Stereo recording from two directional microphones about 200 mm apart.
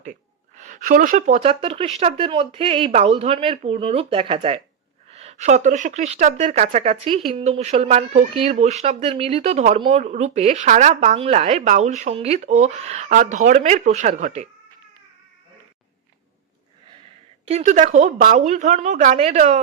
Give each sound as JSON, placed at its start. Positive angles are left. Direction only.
{"t": 0.0, "sound": "speech", "side_deg": -40}
{"t": 17.5, "sound": "speech", "side_deg": -35}